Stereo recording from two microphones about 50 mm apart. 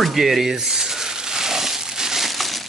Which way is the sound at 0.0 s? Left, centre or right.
Centre.